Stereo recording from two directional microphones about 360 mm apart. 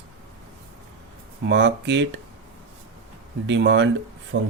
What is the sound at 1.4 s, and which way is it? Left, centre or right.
Speech, right.